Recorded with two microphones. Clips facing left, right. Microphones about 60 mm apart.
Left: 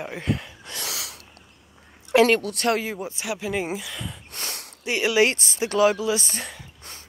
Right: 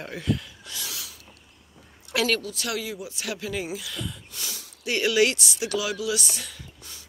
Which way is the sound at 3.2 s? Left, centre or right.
Centre.